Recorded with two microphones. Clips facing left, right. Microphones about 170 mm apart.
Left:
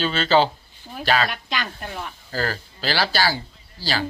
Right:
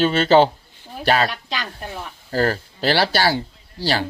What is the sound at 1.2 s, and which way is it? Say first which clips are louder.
Speech: right 2 dB; 35° right (ahead or behind).